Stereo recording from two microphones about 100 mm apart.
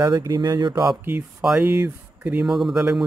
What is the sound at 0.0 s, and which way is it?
Speech, 40° right (ahead or behind).